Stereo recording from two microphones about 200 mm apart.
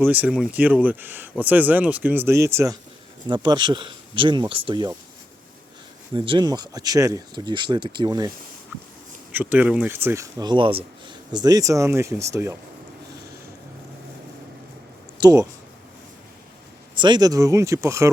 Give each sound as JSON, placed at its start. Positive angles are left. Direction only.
{"t": 0.0, "sound": "speech", "side_deg": -10}
{"t": 6.1, "sound": "speech", "side_deg": -25}
{"t": 9.3, "sound": "speech", "side_deg": -10}
{"t": 15.2, "sound": "speech", "side_deg": -15}
{"t": 17.0, "sound": "speech", "side_deg": -20}